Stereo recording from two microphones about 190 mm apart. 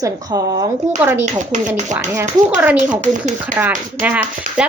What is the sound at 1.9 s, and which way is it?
Speech, 40° right (ahead or behind).